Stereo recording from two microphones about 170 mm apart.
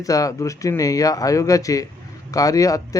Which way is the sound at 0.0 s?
20° left (ahead or behind).